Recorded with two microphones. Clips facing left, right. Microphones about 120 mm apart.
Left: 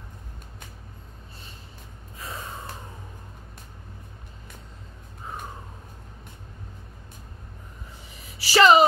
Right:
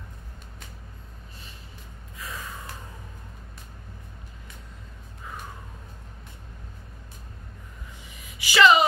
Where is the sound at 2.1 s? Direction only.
30° left (ahead or behind).